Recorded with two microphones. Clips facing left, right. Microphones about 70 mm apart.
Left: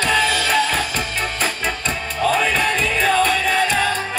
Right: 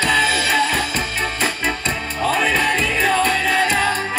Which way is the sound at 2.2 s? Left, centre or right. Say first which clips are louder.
Even; centre.